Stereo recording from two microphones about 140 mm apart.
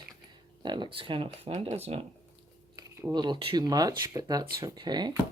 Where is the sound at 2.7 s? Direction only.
20° right (ahead or behind).